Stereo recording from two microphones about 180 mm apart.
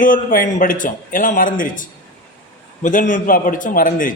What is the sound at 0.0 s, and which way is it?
Speech, 50° left (ahead or behind).